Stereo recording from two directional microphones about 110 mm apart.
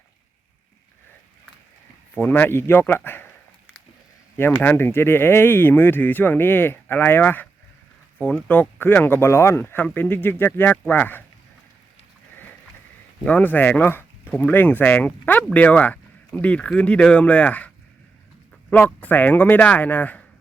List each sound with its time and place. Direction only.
2.1 s speech: 15° left (ahead or behind)
4.5 s speech: 15° left (ahead or behind)
13.2 s speech: 15° left (ahead or behind)
18.7 s speech: 15° left (ahead or behind)